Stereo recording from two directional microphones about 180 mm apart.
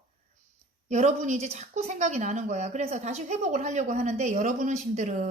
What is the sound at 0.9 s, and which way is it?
Speech, 40° right (ahead or behind).